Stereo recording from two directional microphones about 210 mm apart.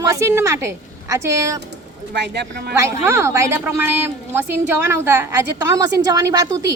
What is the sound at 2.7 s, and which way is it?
Speech, 15° right (ahead or behind).